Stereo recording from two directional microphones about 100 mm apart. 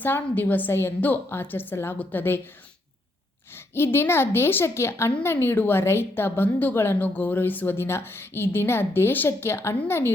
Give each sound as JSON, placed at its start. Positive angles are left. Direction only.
{"t": 0.0, "sound": "a woman's voice", "side_deg": 20}
{"t": 3.5, "sound": "a woman's voice", "side_deg": 25}